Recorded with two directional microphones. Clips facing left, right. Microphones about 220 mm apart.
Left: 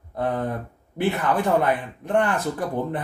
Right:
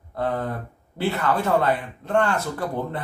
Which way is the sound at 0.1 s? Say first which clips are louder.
Left 1 dB; 20° left (ahead or behind).